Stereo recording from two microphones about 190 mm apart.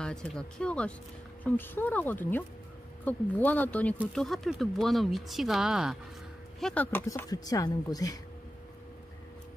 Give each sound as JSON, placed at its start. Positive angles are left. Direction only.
{"t": 0.0, "sound": "speech", "side_deg": 5}